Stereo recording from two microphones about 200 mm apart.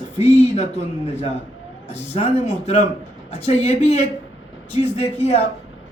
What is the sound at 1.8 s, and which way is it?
A man's voice, 30° left (ahead or behind).